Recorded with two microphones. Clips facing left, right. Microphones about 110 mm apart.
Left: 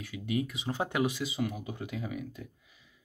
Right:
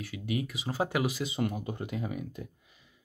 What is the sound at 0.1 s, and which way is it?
Speech, 20° right (ahead or behind).